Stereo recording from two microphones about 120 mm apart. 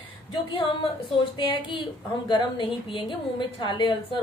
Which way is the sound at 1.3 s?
40° left (ahead or behind).